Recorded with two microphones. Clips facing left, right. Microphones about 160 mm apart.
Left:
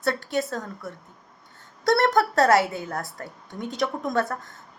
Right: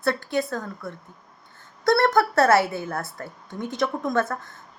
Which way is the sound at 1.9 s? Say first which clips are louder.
Right 1 dB; 20° left (ahead or behind).